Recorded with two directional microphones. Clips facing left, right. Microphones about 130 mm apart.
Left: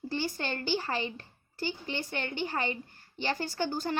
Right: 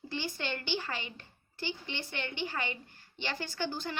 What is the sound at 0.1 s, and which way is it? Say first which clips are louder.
A woman's voice: left 3 dB; 40° left (ahead or behind).